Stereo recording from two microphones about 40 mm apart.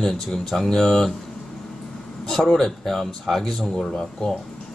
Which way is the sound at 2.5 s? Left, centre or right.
Centre.